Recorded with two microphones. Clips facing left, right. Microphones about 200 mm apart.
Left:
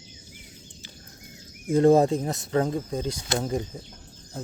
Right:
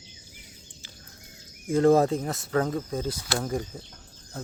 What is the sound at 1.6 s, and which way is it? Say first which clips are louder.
Speech: left 2 dB; 15° left (ahead or behind).